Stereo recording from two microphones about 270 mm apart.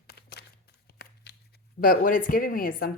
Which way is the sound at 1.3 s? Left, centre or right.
Left.